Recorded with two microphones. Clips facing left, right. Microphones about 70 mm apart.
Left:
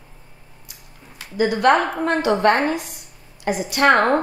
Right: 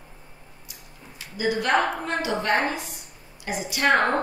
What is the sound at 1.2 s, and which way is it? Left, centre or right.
A woman's voice, left.